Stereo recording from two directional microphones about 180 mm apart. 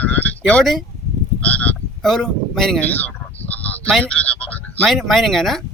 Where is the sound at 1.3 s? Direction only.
10° left (ahead or behind).